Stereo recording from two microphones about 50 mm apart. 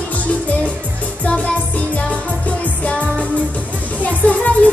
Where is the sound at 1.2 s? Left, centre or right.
Left.